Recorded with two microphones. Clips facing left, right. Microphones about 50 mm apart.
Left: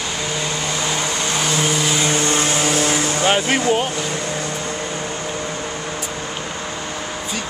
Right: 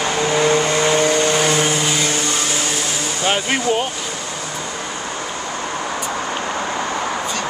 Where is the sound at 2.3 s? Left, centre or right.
Left.